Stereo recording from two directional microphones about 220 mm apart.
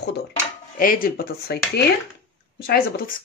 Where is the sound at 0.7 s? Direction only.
40° left (ahead or behind).